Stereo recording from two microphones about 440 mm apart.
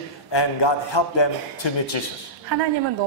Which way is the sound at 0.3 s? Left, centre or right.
Left.